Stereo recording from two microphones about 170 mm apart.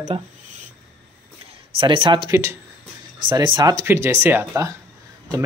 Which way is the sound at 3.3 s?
25° right (ahead or behind).